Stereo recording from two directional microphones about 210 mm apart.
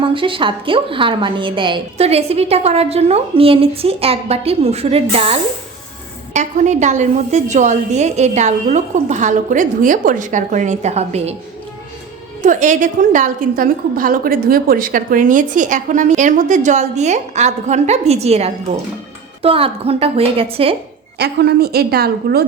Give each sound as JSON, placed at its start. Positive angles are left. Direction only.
{"t": 0.1, "sound": "a woman's voice", "side_deg": -25}
{"t": 12.4, "sound": "a woman's voice", "side_deg": -35}
{"t": 21.2, "sound": "a woman's voice", "side_deg": -50}